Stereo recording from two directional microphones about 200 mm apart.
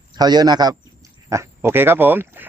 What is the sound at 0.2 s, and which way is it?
A man's voice, 20° right (ahead or behind).